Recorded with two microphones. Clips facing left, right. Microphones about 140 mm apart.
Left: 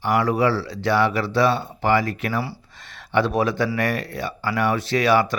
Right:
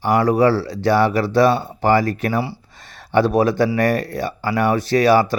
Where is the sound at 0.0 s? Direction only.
40° right (ahead or behind).